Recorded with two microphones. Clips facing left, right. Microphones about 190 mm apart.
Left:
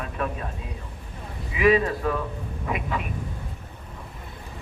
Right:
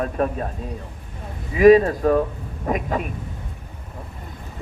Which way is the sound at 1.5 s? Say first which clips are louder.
Right 8 dB; 40° right (ahead or behind).